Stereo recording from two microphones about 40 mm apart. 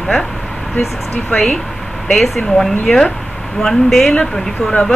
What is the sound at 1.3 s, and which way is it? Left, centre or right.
A woman's voice, centre.